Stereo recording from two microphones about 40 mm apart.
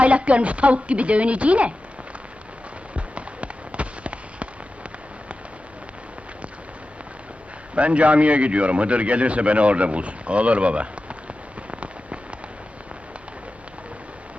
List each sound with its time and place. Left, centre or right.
0.0 s a man's voice: right
2.9 s fireworks: right
7.8 s a man's voice: right